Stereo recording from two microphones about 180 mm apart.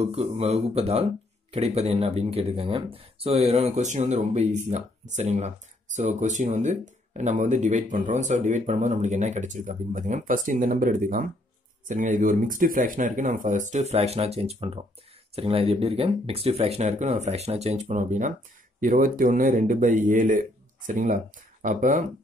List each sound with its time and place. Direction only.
0.0 s speech: 35° right (ahead or behind)